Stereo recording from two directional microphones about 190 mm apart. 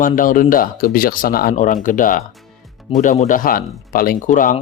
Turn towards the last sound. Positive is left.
turn(degrees=45)  # may be behind; listen again after turning